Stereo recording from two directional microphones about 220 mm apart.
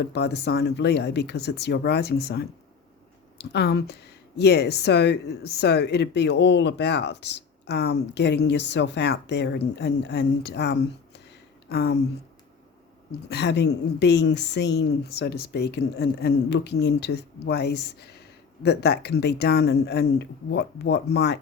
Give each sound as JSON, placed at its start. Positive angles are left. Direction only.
{"t": 0.0, "sound": "speech", "side_deg": 50}
{"t": 13.1, "sound": "speech", "side_deg": 50}